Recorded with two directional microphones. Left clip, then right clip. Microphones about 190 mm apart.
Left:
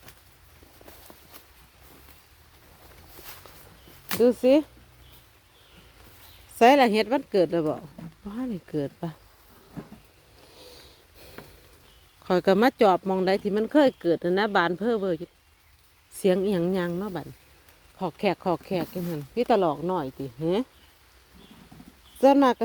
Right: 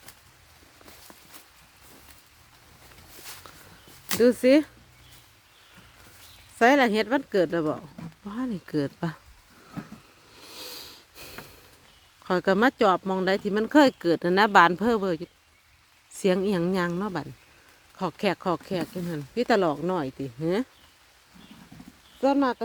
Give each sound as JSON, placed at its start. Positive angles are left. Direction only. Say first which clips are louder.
{"t": 4.2, "sound": "speech", "louder": "even", "side_deg": -10}
{"t": 6.6, "sound": "speech", "louder": "left 2 dB", "side_deg": 5}
{"t": 10.5, "sound": "a sound", "louder": "right 8 dB", "side_deg": -45}
{"t": 12.2, "sound": "speech", "louder": "left 1 dB", "side_deg": 5}
{"t": 22.2, "sound": "speech", "louder": "left 5 dB", "side_deg": 35}